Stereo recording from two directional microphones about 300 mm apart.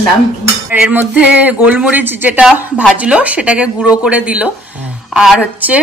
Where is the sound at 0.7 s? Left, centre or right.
Centre.